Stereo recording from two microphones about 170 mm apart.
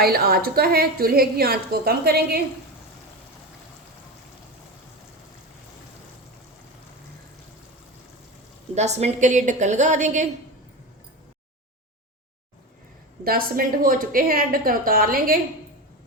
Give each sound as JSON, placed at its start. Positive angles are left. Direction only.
{"t": 0.0, "sound": "a woman's voice", "side_deg": -65}
{"t": 8.7, "sound": "a woman's voice", "side_deg": -40}
{"t": 13.2, "sound": "a woman's voice", "side_deg": -60}